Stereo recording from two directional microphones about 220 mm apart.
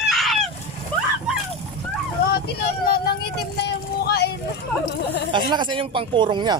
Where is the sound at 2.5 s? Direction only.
45° left (ahead or behind).